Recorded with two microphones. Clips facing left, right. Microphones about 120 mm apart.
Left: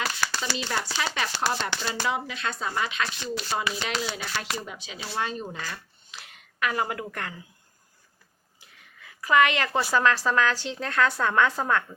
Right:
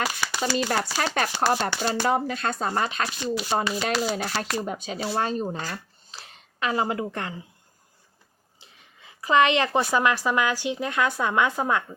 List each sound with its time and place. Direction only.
0.3 s shuffling cards: 10° right (ahead or behind)
0.5 s speech: 50° right (ahead or behind); by 7.4 s 25° right (ahead or behind)
8.6 s a sound: 20° right (ahead or behind)
9.9 s a woman's voice: 15° right (ahead or behind)